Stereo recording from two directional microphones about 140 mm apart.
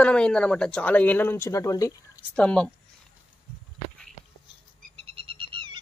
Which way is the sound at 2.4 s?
5° left (ahead or behind).